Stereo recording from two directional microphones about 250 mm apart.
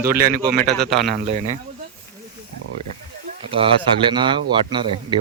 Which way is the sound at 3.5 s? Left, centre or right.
Right.